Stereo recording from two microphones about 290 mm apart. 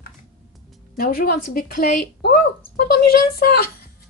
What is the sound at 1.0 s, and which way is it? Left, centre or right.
A woman's voice, left.